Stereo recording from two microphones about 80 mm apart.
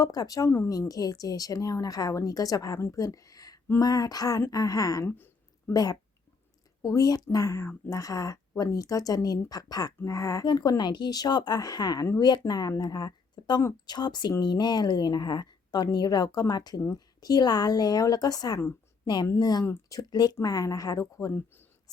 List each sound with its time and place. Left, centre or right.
0.0 s a woman's voice: left
5.0 s a sound: left
5.7 s a woman's voice: left
10.0 s a woman's voice: left
10.4 s a woman's voice: left
21.3 s a sound: left